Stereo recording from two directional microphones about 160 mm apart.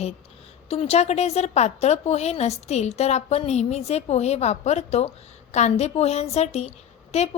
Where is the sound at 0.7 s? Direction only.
40° left (ahead or behind).